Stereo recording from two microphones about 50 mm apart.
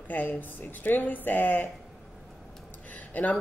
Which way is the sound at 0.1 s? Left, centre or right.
Left.